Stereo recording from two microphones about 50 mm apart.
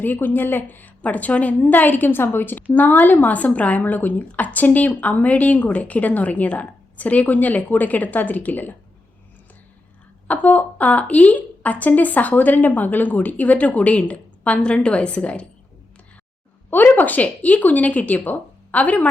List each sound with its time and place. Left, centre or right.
0.0 s speech: left
10.2 s a woman's voice: left
16.6 s speech: left